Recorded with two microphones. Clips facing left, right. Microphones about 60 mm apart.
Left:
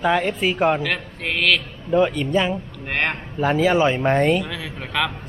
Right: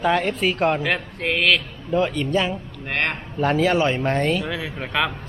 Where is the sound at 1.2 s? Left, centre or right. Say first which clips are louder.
Even; centre.